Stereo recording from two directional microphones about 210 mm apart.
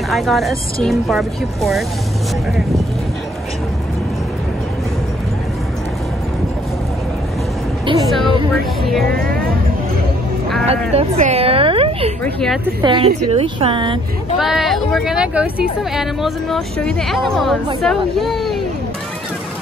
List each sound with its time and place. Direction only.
0.1 s speech: centre (ahead or behind)
10.7 s a woman's voice: 30° right (ahead or behind)
12.2 s speech: 5° left (ahead or behind)
12.8 s a woman's voice: 25° right (ahead or behind)
14.4 s speech: centre (ahead or behind)